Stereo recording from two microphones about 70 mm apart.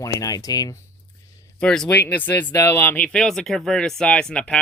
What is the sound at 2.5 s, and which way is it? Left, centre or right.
Speech, left.